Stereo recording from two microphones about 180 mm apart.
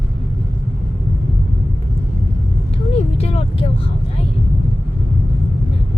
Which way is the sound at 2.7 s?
35° left (ahead or behind).